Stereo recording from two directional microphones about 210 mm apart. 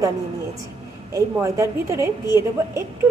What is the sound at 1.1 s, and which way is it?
A woman's voice, 15° right (ahead or behind).